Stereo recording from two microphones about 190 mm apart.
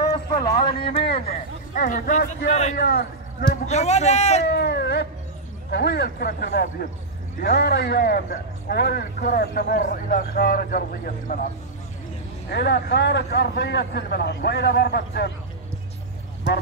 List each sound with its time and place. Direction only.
0.0 s a sound: 20° left (ahead or behind)
0.6 s speech: 30° left (ahead or behind)
1.3 s speech: 45° left (ahead or behind)
2.8 s a man's voice: 55° left (ahead or behind)
3.6 s speech: 35° left (ahead or behind)
4.5 s a man's voice: 60° left (ahead or behind)
12.4 s a man's voice: 60° left (ahead or behind)